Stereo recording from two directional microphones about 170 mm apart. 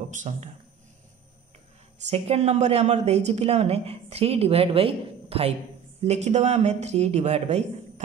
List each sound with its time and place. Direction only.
0.1 s a man's voice: 45° right (ahead or behind)
2.0 s speech: 35° right (ahead or behind)